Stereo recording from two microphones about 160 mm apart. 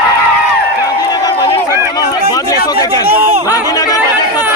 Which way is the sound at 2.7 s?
25° left (ahead or behind).